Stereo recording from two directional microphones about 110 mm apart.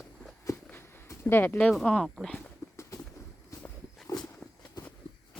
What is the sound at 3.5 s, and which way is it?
Walk, 30° left (ahead or behind).